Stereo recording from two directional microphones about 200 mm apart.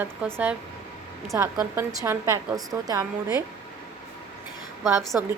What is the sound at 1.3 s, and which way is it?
Speech, 15° right (ahead or behind).